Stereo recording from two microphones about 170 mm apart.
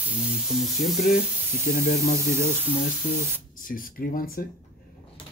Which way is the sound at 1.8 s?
60° left (ahead or behind).